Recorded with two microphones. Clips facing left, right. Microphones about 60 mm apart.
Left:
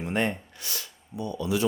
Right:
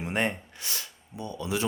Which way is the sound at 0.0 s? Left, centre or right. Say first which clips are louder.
Left 1 dB; centre.